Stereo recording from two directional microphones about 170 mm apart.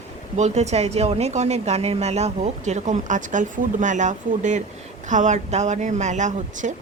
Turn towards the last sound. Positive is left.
turn(degrees=-45)  # may be behind; listen again after turning